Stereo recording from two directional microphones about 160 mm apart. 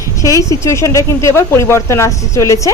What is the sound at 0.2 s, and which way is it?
A woman's voice, 20° left (ahead or behind).